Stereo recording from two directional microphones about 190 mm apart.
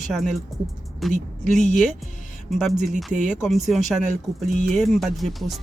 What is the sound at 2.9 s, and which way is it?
Speech, 40° right (ahead or behind).